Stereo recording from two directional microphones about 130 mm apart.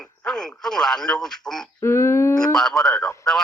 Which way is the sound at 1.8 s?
20° left (ahead or behind).